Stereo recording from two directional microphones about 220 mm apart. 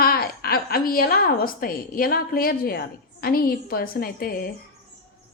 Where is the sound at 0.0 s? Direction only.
45° left (ahead or behind).